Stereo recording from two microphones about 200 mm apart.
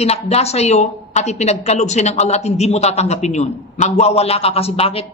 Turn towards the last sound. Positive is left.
turn(degrees=30)  # may be behind; listen again after turning